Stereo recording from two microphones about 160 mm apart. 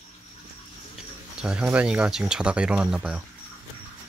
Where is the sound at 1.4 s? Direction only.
5° right (ahead or behind).